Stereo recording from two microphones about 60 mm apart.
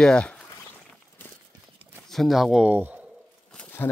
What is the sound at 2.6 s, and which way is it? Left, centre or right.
Speech, right.